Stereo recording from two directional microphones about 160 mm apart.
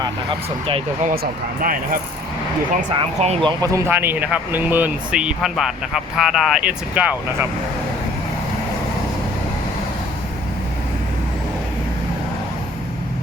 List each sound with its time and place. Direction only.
0.0 s speech: 30° right (ahead or behind)
1.0 s speech: 65° right (ahead or behind)
2.9 s speech: 35° right (ahead or behind)
3.6 s speech: 20° right (ahead or behind)